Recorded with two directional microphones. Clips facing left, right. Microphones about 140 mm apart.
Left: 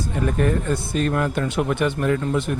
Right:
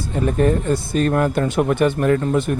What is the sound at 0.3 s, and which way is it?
Speech, 30° right (ahead or behind).